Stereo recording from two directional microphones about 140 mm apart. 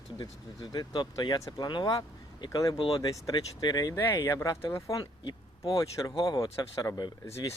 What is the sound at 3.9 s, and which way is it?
Speech, 15° left (ahead or behind).